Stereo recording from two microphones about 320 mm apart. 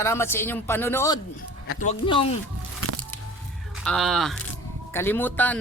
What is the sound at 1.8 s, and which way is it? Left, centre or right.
Speech, centre.